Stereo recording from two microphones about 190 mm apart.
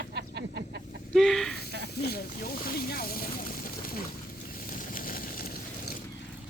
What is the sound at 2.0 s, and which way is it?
Speech, 50° left (ahead or behind).